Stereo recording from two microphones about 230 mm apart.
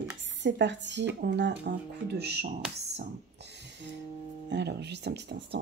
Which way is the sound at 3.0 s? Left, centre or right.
Right.